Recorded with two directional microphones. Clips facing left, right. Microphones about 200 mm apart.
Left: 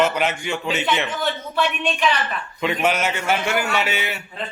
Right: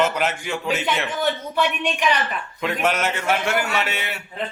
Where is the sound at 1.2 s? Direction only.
15° right (ahead or behind).